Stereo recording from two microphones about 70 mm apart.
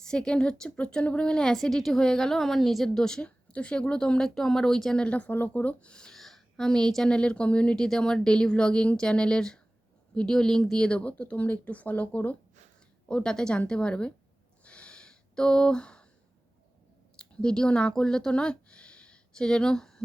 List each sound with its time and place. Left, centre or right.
0.0 s a woman's voice: centre
13.1 s a woman's voice: centre
14.6 s a sound: centre
17.2 s speech: centre